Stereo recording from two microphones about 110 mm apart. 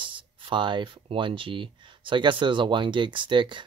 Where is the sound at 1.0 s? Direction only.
50° right (ahead or behind).